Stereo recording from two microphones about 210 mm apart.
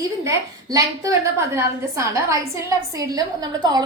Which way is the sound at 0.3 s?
15° right (ahead or behind).